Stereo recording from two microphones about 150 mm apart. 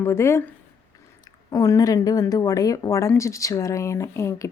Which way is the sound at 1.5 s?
25° left (ahead or behind).